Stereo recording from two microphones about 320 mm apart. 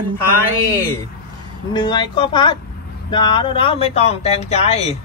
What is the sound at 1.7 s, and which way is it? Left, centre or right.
Speech, centre.